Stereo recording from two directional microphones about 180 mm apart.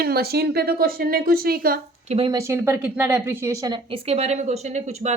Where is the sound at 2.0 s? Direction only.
35° right (ahead or behind).